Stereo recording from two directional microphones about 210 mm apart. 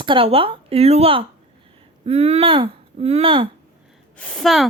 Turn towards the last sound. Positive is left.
turn(degrees=0)  # may be behind; listen again after turning